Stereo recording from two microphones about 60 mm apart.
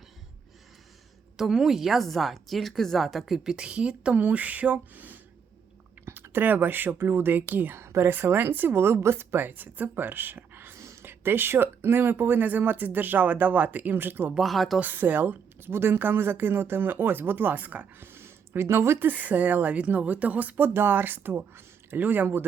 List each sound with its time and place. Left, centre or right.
1.4 s a woman's voice: centre; by 7.8 s right
7.8 s a woman's voice: right
8.1 s speech: right
9.5 s speech: right
10.8 s speech: right
14.3 s a woman's voice: centre
14.8 s speech: right
19.0 s speech: right